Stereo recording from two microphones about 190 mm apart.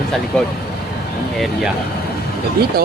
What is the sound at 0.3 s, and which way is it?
Speech, 5° left (ahead or behind).